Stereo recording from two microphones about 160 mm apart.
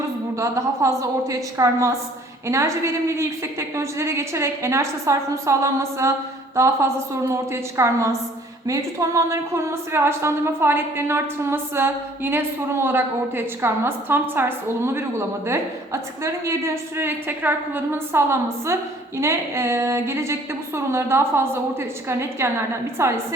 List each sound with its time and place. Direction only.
0.3 s a woman's voice: 20° right (ahead or behind)